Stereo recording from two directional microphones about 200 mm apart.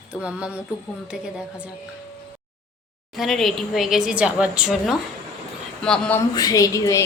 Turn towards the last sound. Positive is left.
turn(degrees=15)  # may be behind; listen again after turning